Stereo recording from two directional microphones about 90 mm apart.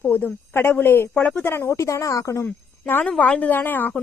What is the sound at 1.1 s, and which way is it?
Speech, 10° left (ahead or behind).